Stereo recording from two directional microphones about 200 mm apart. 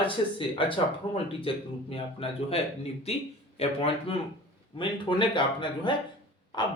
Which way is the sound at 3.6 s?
30° left (ahead or behind).